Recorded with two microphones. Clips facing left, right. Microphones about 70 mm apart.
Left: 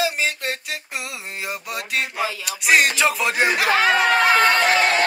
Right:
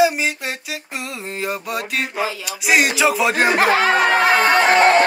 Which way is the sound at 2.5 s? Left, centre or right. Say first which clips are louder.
Even; centre.